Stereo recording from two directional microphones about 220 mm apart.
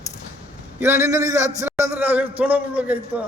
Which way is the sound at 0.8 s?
10° right (ahead or behind).